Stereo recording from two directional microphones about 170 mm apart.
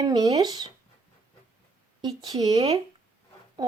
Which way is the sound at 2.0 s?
25° right (ahead or behind).